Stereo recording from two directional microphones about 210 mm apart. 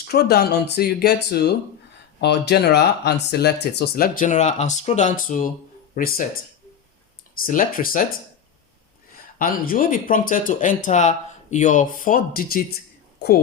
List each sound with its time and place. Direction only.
0.1 s speech: 50° left (ahead or behind)
7.3 s speech: 40° left (ahead or behind)
9.4 s speech: 40° left (ahead or behind)
13.1 s whispering: 50° left (ahead or behind)